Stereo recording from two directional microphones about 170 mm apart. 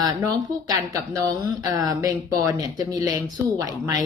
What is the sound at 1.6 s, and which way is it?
Speech, 20° right (ahead or behind).